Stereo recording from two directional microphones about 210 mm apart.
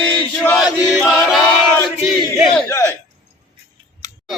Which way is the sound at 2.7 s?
15° left (ahead or behind).